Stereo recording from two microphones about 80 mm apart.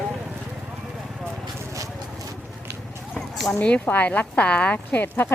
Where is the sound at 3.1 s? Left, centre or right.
Centre.